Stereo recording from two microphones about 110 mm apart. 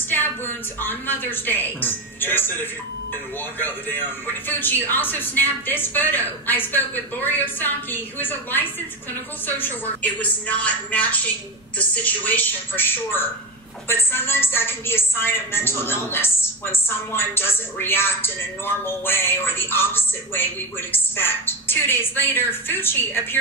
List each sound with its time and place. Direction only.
0.1 s a woman's voice: 20° left (ahead or behind)
4.5 s a woman's voice: 15° left (ahead or behind)